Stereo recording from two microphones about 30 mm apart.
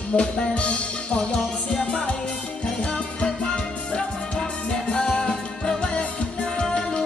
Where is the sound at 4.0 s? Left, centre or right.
Left.